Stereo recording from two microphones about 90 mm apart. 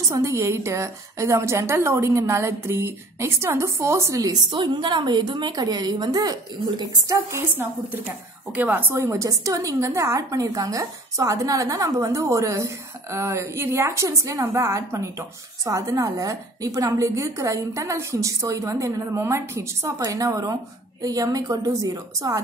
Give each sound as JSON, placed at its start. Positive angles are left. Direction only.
{"t": 0.1, "sound": "a woman's voice", "side_deg": -35}
{"t": 4.5, "sound": "a woman's voice", "side_deg": -60}
{"t": 8.9, "sound": "a woman's voice", "side_deg": -35}